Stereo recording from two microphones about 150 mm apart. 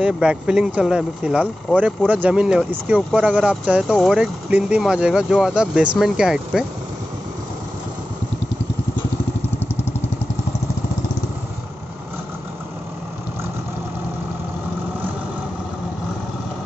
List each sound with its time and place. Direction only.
0.0 s speech: 5° right (ahead or behind)